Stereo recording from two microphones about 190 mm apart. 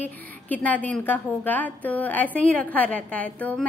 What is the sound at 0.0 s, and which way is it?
A woman's voice, 10° left (ahead or behind).